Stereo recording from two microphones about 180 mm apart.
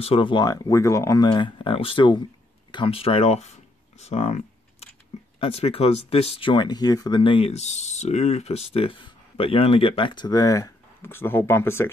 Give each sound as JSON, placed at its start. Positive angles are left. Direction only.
{"t": 0.0, "sound": "speech", "side_deg": 30}
{"t": 4.0, "sound": "camera", "side_deg": 35}
{"t": 5.4, "sound": "speech", "side_deg": 30}